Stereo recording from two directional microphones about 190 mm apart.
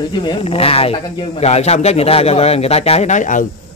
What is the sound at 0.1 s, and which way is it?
A man's voice, 25° left (ahead or behind).